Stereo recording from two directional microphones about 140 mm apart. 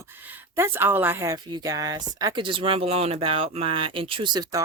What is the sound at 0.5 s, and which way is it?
A woman's voice, 15° right (ahead or behind).